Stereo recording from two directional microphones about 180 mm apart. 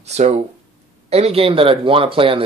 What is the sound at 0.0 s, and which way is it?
Speech, 35° right (ahead or behind).